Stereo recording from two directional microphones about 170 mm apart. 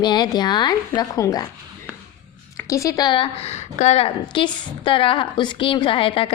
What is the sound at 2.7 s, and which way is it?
A woman's voice, 20° left (ahead or behind).